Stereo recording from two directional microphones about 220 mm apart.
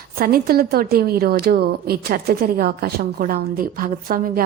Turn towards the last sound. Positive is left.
turn(degrees=-40)  # may be behind; listen again after turning